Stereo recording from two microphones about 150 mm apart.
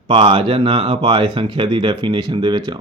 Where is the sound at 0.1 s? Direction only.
35° right (ahead or behind).